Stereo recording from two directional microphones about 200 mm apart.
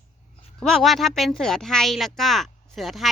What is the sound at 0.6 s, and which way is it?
Speech, 5° left (ahead or behind).